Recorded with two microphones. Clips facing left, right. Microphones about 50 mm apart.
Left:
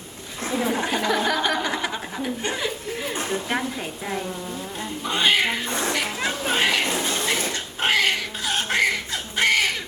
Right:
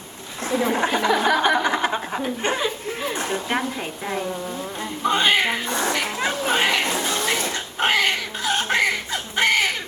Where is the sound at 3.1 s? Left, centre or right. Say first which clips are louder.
Even; right.